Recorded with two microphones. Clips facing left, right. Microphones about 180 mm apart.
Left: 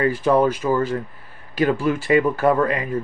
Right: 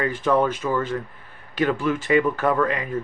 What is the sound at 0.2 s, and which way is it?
Speech, 35° left (ahead or behind).